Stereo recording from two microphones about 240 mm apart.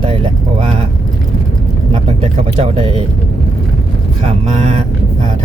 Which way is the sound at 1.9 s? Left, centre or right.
Right.